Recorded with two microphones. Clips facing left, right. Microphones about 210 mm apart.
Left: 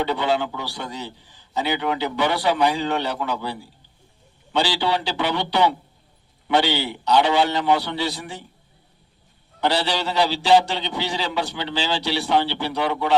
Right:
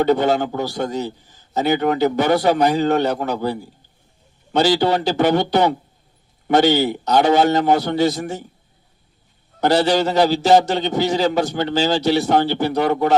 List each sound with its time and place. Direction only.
0.0 s a man's voice: 45° right (ahead or behind)
9.6 s a man's voice: 45° right (ahead or behind)